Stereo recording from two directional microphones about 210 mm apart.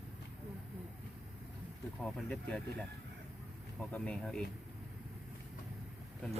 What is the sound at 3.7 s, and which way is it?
Speech, 5° left (ahead or behind).